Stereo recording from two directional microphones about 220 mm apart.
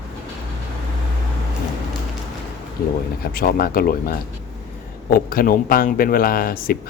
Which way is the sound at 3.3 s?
40° left (ahead or behind).